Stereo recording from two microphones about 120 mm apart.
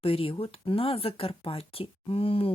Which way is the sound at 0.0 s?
50° left (ahead or behind).